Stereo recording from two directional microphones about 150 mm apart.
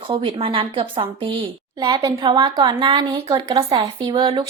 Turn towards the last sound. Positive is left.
turn(degrees=-30)  # may be behind; listen again after turning